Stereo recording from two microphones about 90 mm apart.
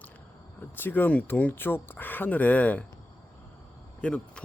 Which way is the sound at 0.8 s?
20° left (ahead or behind).